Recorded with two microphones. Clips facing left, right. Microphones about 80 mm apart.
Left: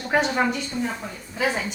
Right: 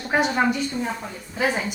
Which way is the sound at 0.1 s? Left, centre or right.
Centre.